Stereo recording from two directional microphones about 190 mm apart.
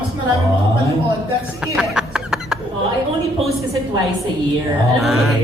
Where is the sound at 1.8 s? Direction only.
5° right (ahead or behind).